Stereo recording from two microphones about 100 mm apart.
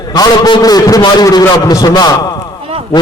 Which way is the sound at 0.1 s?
45° left (ahead or behind).